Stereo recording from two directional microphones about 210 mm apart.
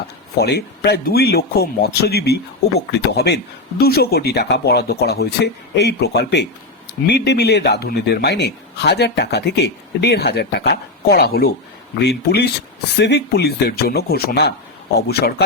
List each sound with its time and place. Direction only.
0.3 s speech: 50° left (ahead or behind)